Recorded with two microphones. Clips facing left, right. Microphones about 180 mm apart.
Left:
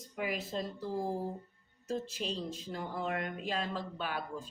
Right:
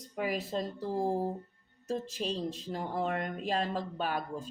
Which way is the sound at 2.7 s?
35° right (ahead or behind).